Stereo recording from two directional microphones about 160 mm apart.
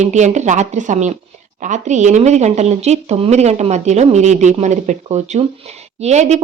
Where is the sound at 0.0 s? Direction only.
45° right (ahead or behind).